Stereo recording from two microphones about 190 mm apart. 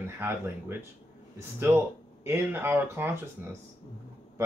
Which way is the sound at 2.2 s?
10° right (ahead or behind).